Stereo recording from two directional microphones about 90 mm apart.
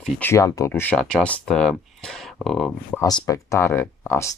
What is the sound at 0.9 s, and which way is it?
Speech, 10° left (ahead or behind).